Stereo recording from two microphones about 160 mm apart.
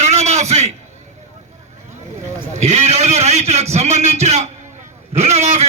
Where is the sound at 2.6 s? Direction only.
45° right (ahead or behind).